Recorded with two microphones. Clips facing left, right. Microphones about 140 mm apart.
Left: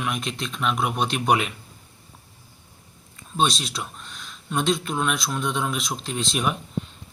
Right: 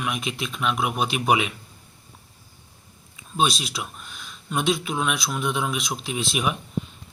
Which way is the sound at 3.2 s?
5° right (ahead or behind).